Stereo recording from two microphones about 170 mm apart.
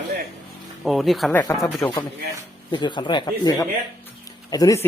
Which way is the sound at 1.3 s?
10° left (ahead or behind).